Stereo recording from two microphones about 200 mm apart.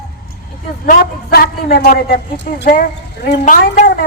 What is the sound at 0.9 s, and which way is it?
A man's voice, 50° left (ahead or behind).